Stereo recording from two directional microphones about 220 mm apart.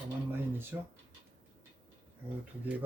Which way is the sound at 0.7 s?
10° right (ahead or behind).